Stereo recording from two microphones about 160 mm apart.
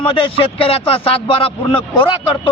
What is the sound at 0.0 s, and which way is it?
A man's voice, 35° left (ahead or behind).